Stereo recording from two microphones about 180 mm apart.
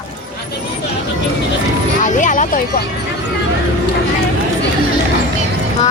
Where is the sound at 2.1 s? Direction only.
45° left (ahead or behind).